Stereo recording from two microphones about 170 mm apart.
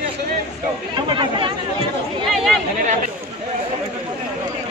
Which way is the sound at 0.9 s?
25° right (ahead or behind).